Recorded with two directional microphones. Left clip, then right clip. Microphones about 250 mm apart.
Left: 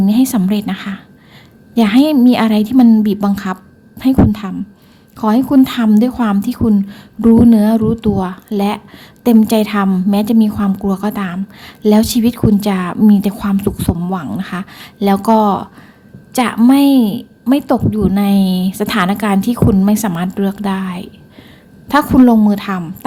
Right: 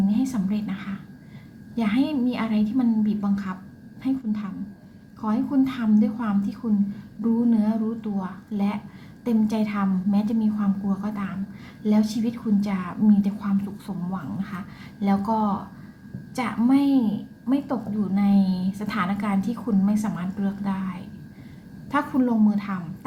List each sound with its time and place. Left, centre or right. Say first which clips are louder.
0.1 s a woman's voice: left 12 dB; left